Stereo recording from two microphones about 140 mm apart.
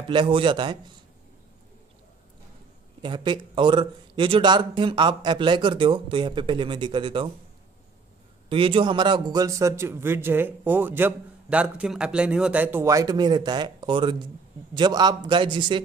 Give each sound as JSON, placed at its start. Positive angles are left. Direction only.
{"t": 0.1, "sound": "speech", "side_deg": -35}
{"t": 3.0, "sound": "speech", "side_deg": -35}
{"t": 8.5, "sound": "a man's voice", "side_deg": -40}